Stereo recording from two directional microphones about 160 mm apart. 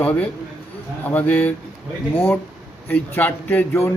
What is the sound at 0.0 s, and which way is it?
Speech, 10° left (ahead or behind).